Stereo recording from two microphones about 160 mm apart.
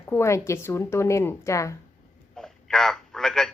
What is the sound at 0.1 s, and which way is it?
A woman's voice, 15° left (ahead or behind).